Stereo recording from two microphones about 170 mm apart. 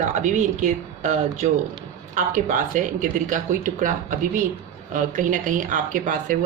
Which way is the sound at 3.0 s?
50° right (ahead or behind).